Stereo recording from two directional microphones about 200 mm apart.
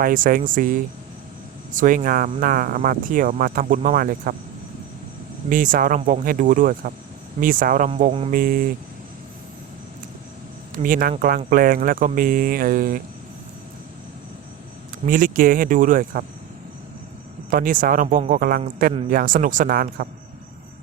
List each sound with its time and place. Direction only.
0.0 s speech: 45° right (ahead or behind)
5.5 s speech: 45° right (ahead or behind)
7.9 s cricket: 35° right (ahead or behind)
8.3 s speech: 45° right (ahead or behind)
10.8 s speech: 45° right (ahead or behind)
15.0 s speech: 45° right (ahead or behind)
17.5 s speech: 45° right (ahead or behind)